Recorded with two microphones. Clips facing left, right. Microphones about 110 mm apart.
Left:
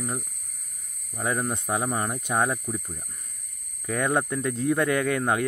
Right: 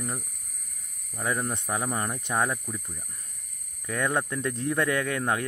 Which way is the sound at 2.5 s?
25° left (ahead or behind).